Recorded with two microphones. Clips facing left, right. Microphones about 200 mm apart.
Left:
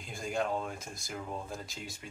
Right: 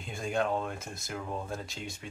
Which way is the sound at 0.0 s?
Centre (ahead or behind).